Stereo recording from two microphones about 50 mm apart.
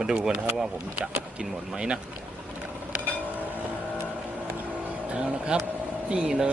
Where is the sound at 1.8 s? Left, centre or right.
Centre.